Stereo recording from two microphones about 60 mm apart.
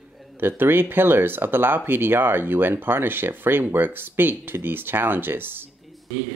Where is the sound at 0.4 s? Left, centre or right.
Right.